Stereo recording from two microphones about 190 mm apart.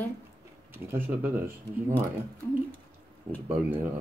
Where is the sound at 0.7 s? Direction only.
10° right (ahead or behind).